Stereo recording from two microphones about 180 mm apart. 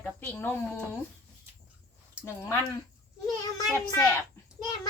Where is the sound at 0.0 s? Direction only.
10° left (ahead or behind).